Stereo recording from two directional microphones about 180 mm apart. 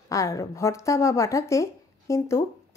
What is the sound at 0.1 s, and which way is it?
Speech, 15° left (ahead or behind).